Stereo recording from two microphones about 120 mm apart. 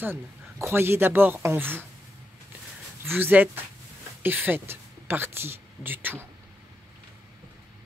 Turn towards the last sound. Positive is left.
turn(degrees=-15)  # may be behind; listen again after turning